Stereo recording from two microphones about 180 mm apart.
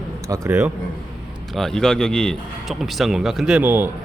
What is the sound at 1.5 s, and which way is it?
Speech, centre (ahead or behind).